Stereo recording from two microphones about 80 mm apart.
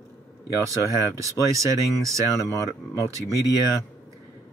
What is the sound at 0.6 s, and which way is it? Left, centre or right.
Speech, right.